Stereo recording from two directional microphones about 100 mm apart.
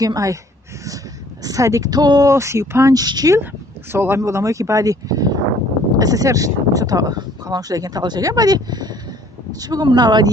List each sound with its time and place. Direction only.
0.0 s speech: 35° right (ahead or behind)
1.4 s speech: 35° right (ahead or behind)
2.3 s speech: 30° right (ahead or behind)
3.9 s speech: 20° right (ahead or behind); by 10.3 s 45° right (ahead or behind)